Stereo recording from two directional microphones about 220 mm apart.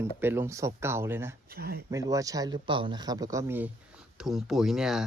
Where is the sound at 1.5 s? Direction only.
45° right (ahead or behind).